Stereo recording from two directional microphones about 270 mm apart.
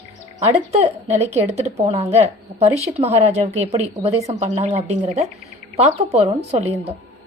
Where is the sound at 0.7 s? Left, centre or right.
Right.